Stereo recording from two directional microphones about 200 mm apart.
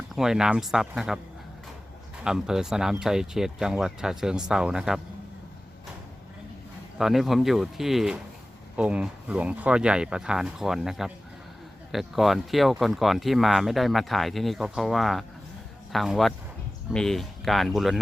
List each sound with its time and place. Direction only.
0.2 s speech: 5° right (ahead or behind)
2.2 s speech: 5° right (ahead or behind)
7.0 s speech: centre (ahead or behind)